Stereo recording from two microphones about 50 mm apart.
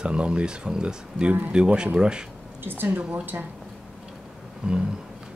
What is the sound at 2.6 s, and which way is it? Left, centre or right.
Speech, right.